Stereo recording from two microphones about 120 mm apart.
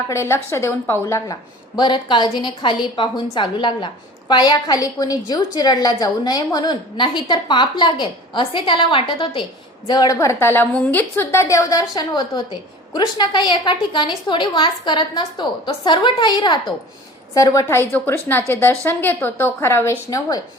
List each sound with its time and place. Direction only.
0.1 s a woman's voice: 20° left (ahead or behind); by 16.7 s 40° left (ahead or behind)
17.3 s a woman's voice: 25° left (ahead or behind)